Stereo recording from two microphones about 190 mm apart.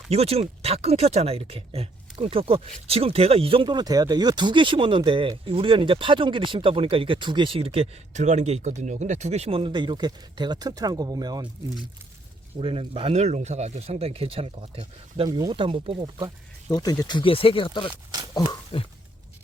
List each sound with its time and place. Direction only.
0.1 s speech: 30° right (ahead or behind)
12.5 s speech: 30° right (ahead or behind)
16.6 s speech: 20° left (ahead or behind)
18.3 s a sound: 25° left (ahead or behind)